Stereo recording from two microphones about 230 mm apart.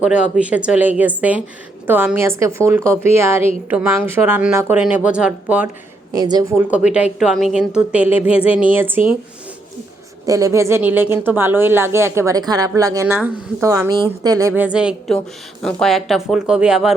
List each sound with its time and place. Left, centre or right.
0.0 s a woman's voice: centre
6.1 s a woman's voice: centre
8.3 s a sound: left
8.7 s a woman's voice: centre
10.2 s a woman's voice: centre